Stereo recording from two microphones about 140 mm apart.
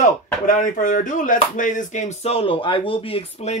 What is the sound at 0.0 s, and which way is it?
Speech, 65° left (ahead or behind).